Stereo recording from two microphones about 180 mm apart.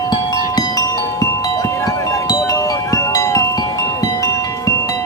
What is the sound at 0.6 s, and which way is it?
Wind chime, 20° left (ahead or behind).